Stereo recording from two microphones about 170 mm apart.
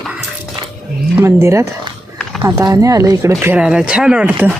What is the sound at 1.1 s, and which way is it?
Speech, 15° right (ahead or behind).